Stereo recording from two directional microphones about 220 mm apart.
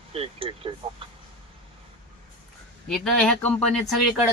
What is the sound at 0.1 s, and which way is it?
Speech, 25° right (ahead or behind).